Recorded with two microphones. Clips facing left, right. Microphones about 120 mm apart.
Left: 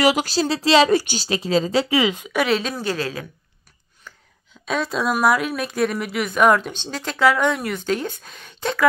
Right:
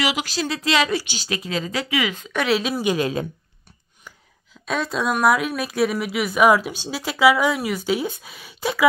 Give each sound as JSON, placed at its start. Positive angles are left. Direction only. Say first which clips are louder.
{"t": 0.0, "sound": "speech", "louder": "left 6 dB", "side_deg": 45}
{"t": 0.9, "sound": "a woman's voice", "louder": "left 6 dB", "side_deg": 45}
{"t": 1.2, "sound": "speech", "louder": "left 6 dB", "side_deg": 30}
{"t": 2.4, "sound": "a woman's voice", "louder": "right 2 dB", "side_deg": -5}
{"t": 4.6, "sound": "speech", "louder": "left 1 dB", "side_deg": 0}